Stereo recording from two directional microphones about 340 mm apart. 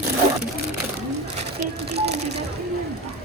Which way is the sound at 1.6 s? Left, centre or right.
Centre.